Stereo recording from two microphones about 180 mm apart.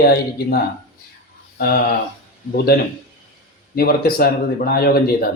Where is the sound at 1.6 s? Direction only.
55° left (ahead or behind).